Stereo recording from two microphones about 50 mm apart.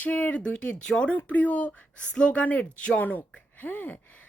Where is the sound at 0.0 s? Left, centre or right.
Left.